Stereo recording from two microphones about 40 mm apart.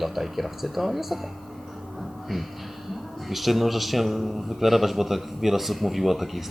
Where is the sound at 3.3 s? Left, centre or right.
Centre.